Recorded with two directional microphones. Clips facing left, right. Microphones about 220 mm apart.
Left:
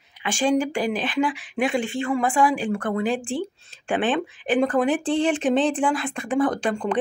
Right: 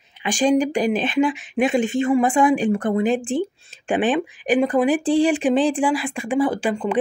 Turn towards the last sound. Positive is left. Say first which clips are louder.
# right 2 dB
turn(degrees=-5)  # may be behind; listen again after turning